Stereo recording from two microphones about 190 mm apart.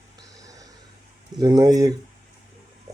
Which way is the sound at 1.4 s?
20° right (ahead or behind).